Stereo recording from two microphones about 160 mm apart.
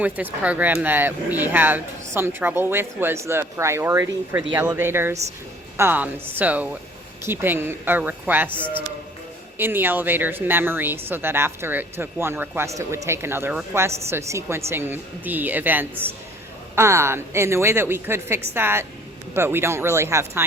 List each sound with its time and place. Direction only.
0.0 s speech: 10° right (ahead or behind)